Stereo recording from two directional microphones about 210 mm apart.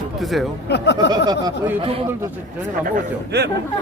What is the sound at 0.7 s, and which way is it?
Speech, 55° left (ahead or behind).